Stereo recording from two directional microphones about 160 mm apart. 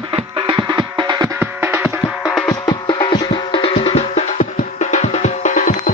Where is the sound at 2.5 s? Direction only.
25° left (ahead or behind).